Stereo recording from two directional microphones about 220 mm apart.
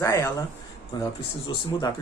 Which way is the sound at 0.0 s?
15° left (ahead or behind).